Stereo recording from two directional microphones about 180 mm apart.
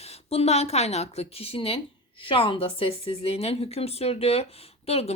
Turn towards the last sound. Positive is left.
turn(degrees=35)  # may be behind; listen again after turning